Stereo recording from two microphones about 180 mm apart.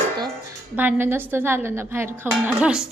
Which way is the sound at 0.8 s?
10° right (ahead or behind).